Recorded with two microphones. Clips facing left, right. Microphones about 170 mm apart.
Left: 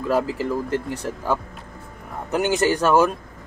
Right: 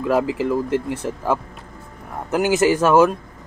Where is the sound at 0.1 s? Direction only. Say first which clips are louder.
Right 3 dB; 10° right (ahead or behind).